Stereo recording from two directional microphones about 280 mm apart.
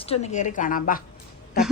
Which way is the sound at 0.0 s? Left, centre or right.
Left.